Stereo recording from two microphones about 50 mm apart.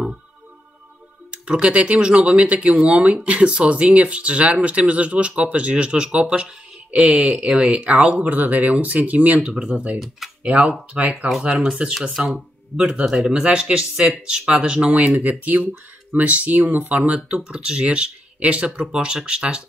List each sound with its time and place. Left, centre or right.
1.4 s speech: right
9.5 s speech: centre
10.4 s speech: centre
14.9 s speech: right
17.3 s speech: centre